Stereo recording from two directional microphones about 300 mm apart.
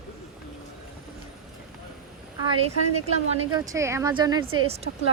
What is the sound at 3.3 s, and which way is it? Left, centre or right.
Speech, centre.